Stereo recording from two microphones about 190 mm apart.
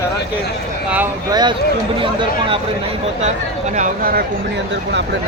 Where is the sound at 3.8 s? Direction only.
50° right (ahead or behind).